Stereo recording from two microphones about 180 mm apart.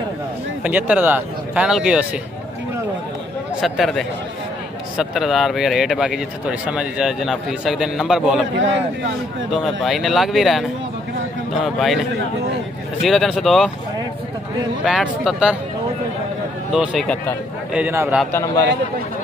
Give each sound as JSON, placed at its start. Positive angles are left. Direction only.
{"t": 0.7, "sound": "speech", "side_deg": -10}
{"t": 3.6, "sound": "speech", "side_deg": 0}
{"t": 8.5, "sound": "speech", "side_deg": -90}
{"t": 9.5, "sound": "speech", "side_deg": 0}
{"t": 13.0, "sound": "speech", "side_deg": 0}
{"t": 14.9, "sound": "speech", "side_deg": -5}
{"t": 16.7, "sound": "speech", "side_deg": 0}
{"t": 17.7, "sound": "speech", "side_deg": -10}
{"t": 18.3, "sound": "a man's voice", "side_deg": 15}